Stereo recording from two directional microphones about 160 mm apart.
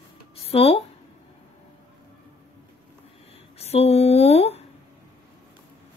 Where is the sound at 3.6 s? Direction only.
40° left (ahead or behind).